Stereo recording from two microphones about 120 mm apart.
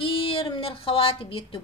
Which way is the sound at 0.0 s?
50° left (ahead or behind).